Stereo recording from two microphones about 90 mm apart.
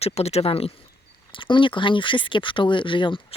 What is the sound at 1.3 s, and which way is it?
Speech, 65° left (ahead or behind).